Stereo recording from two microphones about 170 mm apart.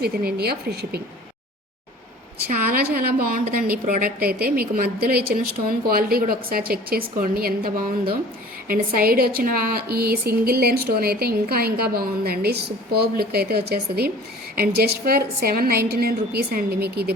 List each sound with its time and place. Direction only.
0.0 s a woman's voice: 65° right (ahead or behind)
2.5 s speech: 60° right (ahead or behind)